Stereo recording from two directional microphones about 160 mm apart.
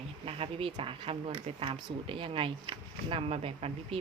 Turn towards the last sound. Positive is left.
turn(degrees=-40)  # may be behind; listen again after turning